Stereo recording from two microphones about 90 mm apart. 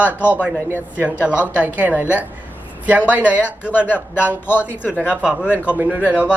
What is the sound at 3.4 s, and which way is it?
Speech, 20° left (ahead or behind).